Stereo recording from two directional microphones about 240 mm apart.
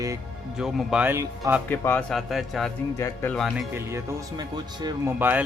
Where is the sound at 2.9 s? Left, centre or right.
Centre.